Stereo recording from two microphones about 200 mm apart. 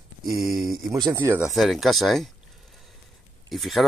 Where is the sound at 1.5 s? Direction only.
Centre (ahead or behind).